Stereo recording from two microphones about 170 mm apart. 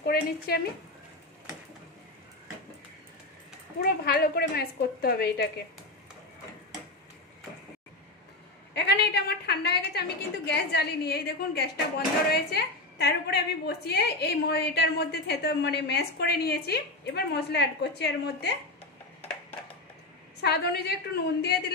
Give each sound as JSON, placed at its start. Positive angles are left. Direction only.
{"t": 0.0, "sound": "speech", "side_deg": 65}
{"t": 3.8, "sound": "a woman's voice", "side_deg": 65}
{"t": 8.7, "sound": "a woman's voice", "side_deg": 75}
{"t": 20.4, "sound": "a woman's voice", "side_deg": 70}